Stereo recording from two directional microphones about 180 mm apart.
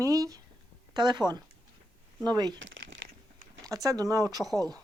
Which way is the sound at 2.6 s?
90° right.